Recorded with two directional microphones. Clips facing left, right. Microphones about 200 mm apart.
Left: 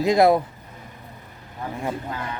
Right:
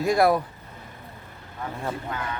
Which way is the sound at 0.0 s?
20° left (ahead or behind).